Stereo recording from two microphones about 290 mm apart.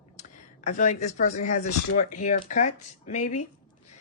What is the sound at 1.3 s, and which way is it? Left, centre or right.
A woman's voice, left.